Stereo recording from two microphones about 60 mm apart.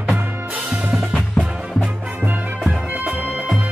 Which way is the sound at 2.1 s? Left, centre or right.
Right.